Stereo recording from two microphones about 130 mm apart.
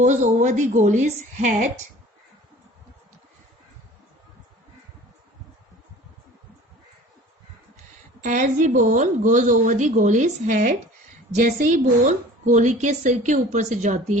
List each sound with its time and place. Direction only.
0.0 s a woman's voice: 70° right (ahead or behind)
8.2 s a woman's voice: 70° right (ahead or behind)